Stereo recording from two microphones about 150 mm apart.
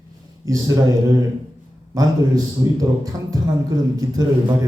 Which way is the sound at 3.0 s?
25° right (ahead or behind).